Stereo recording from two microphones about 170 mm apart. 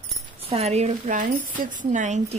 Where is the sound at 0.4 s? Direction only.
35° right (ahead or behind).